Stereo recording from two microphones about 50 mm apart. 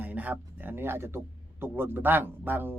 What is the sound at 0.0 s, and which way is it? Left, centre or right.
Speech, right.